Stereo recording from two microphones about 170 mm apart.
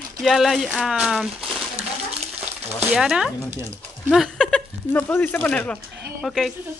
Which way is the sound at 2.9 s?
5° right (ahead or behind).